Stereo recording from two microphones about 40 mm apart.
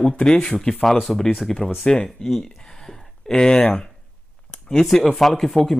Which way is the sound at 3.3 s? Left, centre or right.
Left.